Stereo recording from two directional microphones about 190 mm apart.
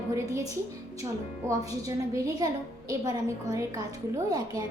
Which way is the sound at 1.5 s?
20° right (ahead or behind).